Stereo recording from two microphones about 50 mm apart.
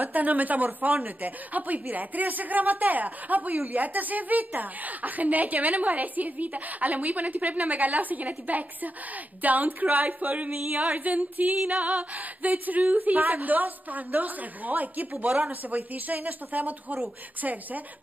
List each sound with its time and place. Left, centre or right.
0.0 s female singing: right